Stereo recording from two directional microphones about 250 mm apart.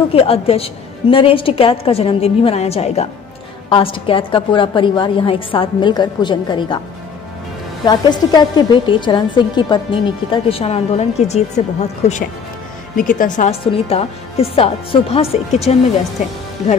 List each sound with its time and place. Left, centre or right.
0.1 s a woman's voice: left
7.8 s a woman's voice: centre
12.9 s a woman's voice: left